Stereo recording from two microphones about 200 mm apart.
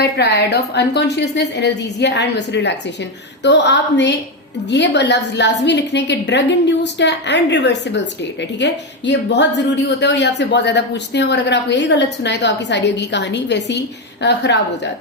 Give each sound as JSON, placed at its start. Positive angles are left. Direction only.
{"t": 0.0, "sound": "a woman's voice", "side_deg": 55}